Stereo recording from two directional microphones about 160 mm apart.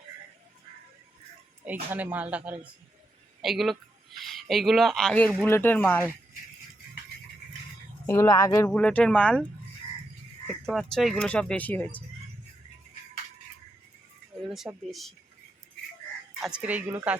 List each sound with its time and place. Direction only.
1.6 s speech: 10° right (ahead or behind); by 6.1 s 10° left (ahead or behind)
8.0 s speech: 20° left (ahead or behind)
8.7 s speech: 10° left (ahead or behind)
10.4 s speech: centre (ahead or behind)
14.4 s speech: centre (ahead or behind)
16.4 s speech: 5° right (ahead or behind)